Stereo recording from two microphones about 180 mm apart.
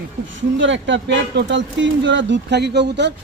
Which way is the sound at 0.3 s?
90° right.